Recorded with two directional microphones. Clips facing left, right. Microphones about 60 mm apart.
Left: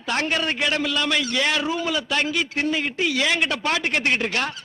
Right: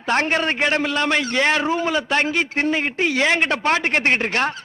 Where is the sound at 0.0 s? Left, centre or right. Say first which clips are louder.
Right 4 dB; right.